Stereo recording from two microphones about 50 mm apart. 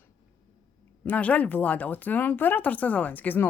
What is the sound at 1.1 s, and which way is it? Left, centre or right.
Speech, left.